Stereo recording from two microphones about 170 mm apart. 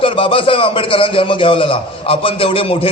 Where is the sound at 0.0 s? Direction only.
30° left (ahead or behind).